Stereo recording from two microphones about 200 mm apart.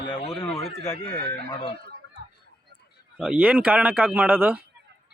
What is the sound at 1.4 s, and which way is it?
Speech, 20° left (ahead or behind).